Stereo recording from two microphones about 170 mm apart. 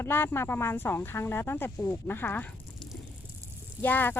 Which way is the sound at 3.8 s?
10° left (ahead or behind).